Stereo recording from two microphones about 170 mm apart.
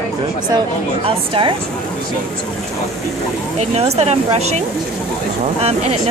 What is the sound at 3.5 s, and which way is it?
Speech, 40° right (ahead or behind).